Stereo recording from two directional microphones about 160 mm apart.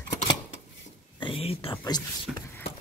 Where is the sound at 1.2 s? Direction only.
35° left (ahead or behind).